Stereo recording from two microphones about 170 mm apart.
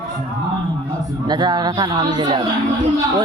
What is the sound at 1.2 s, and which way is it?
A man's voice, 25° right (ahead or behind).